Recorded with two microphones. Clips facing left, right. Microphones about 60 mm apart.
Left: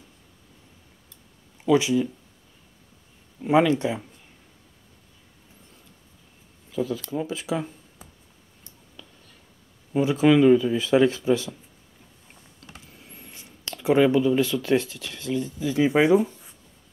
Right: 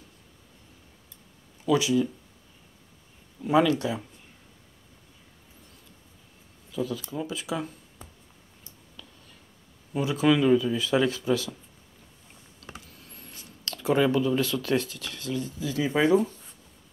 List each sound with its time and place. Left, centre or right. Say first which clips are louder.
1.7 s speech: left 3 dB; left
3.4 s speech: left 3 dB; left
6.7 s speech: left 4 dB; left
9.9 s speech: left 5 dB; left
12.8 s speech: left 2 dB; left
16.1 s speech: left 3 dB; centre